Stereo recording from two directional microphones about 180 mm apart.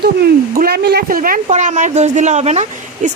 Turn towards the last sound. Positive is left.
turn(degrees=-40)  # may be behind; listen again after turning